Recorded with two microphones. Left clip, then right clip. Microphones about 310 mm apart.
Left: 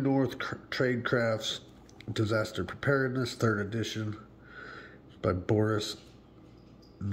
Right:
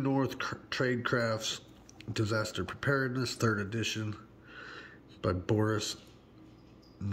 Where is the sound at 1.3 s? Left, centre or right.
Right.